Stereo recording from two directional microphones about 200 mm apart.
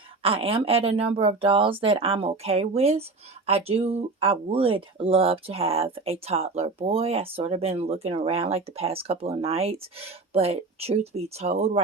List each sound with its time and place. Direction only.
0.2 s speech: 30° right (ahead or behind)